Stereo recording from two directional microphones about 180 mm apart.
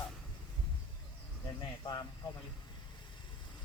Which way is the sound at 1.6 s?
25° left (ahead or behind).